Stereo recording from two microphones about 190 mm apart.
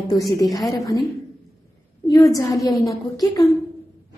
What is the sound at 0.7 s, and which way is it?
Speech, 20° left (ahead or behind).